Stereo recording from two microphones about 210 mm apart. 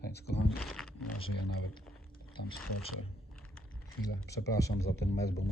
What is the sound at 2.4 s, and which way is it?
Speech, 50° left (ahead or behind).